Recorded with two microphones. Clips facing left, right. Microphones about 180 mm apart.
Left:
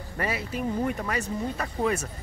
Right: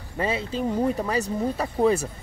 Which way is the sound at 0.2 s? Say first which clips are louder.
Right 4 dB; 25° right (ahead or behind).